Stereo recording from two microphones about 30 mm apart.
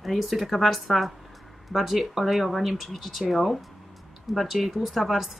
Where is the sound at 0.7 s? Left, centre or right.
Centre.